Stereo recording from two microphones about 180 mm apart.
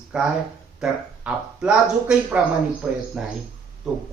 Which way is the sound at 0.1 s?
5° right (ahead or behind).